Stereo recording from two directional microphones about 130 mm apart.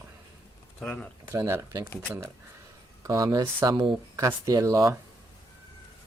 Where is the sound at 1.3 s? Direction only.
20° right (ahead or behind).